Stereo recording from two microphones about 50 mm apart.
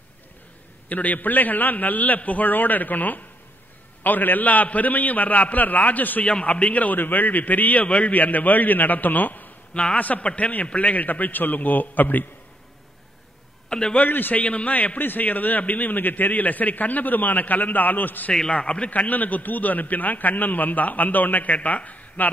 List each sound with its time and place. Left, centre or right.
0.8 s a man's voice: left
13.7 s a man's voice: centre
13.9 s a man's voice: left
14.4 s a man's voice: left
18.3 s a man's voice: centre
18.6 s a man's voice: left